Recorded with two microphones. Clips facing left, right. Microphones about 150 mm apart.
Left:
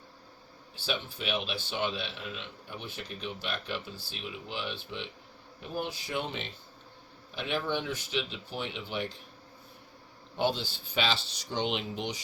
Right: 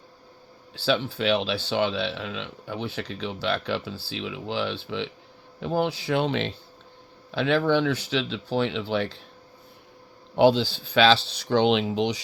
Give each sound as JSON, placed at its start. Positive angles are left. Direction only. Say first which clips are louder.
{"t": 0.8, "sound": "speech", "louder": "right 11 dB", "side_deg": -90}
{"t": 10.3, "sound": "speech", "louder": "right 11 dB", "side_deg": -90}